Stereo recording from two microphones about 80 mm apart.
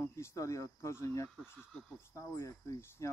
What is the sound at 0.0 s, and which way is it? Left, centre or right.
Speech, left.